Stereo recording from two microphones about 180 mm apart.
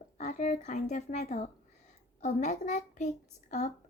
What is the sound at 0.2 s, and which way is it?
A child's voice, 45° left (ahead or behind).